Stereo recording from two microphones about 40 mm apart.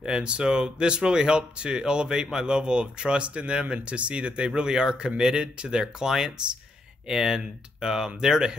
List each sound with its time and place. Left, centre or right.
0.0 s speech: right